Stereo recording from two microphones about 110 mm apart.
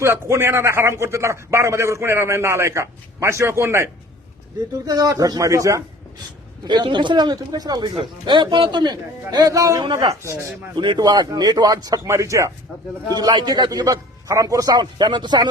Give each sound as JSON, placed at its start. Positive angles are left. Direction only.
{"t": 0.0, "sound": "a man's voice", "side_deg": -20}
{"t": 4.9, "sound": "a man's voice", "side_deg": -30}
{"t": 6.7, "sound": "a man's voice", "side_deg": -45}
{"t": 13.1, "sound": "a man's voice", "side_deg": -40}